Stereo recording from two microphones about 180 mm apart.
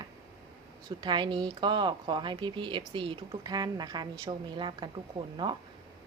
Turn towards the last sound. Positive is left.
turn(degrees=-25)  # may be behind; listen again after turning